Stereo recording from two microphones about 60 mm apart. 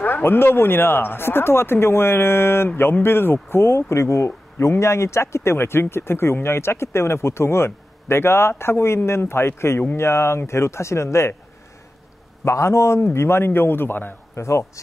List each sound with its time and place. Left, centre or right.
0.0 s speech: left
12.4 s a man's voice: left
14.3 s a man's voice: left